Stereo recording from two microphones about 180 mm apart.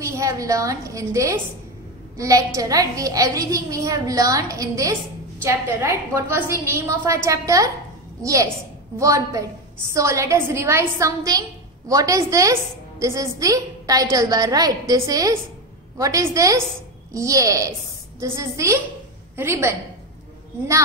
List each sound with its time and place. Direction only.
0.0 s a woman's voice: 15° right (ahead or behind)